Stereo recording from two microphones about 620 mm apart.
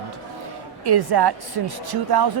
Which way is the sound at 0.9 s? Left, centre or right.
Right.